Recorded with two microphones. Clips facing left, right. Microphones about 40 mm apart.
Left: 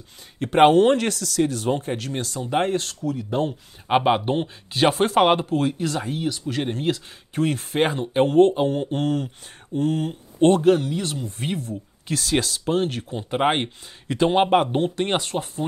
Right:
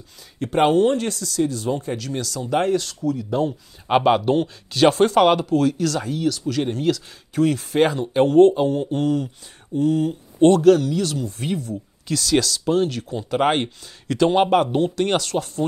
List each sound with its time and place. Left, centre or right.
0.5 s speech: left
1.4 s speech: left
2.0 s speech: left
3.1 s speech: centre
8.6 s speech: left
13.4 s speech: centre